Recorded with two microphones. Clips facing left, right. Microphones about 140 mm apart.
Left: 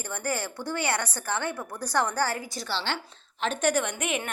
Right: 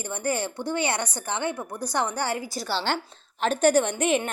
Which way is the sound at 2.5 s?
40° right (ahead or behind).